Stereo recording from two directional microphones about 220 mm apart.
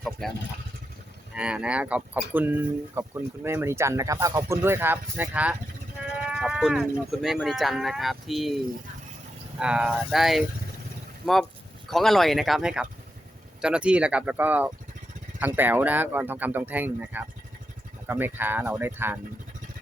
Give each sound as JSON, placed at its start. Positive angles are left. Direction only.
{"t": 1.4, "sound": "speech", "side_deg": -5}